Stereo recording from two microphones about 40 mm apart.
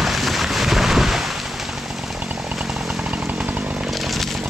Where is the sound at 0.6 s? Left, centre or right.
Centre.